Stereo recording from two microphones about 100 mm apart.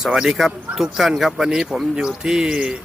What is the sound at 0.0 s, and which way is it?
A man's voice, 5° right (ahead or behind).